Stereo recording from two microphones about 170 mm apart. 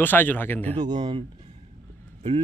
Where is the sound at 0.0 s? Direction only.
10° left (ahead or behind).